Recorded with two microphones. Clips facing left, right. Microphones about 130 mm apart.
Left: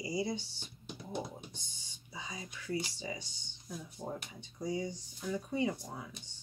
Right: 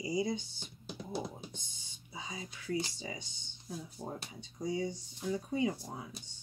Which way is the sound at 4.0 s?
Centre (ahead or behind).